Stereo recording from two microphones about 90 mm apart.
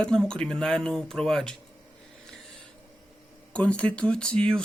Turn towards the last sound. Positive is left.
turn(degrees=10)  # may be behind; listen again after turning